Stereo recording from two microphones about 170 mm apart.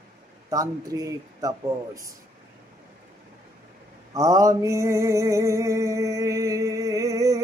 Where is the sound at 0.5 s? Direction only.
20° right (ahead or behind).